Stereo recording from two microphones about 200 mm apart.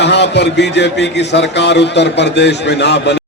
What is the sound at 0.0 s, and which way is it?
A man's voice, 60° left (ahead or behind).